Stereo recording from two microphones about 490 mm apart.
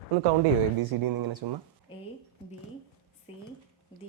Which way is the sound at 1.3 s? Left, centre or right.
Right.